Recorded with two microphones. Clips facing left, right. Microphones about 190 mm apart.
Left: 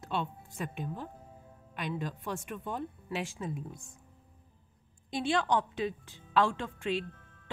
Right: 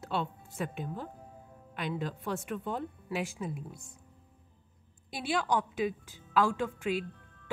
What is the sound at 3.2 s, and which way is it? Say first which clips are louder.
Speech: right 1 dB; 5° right (ahead or behind).